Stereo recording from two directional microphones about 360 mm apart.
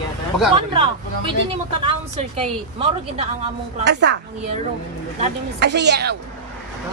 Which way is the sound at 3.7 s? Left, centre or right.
Right.